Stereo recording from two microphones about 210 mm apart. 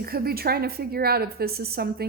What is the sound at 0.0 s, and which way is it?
A woman's voice, 45° right (ahead or behind).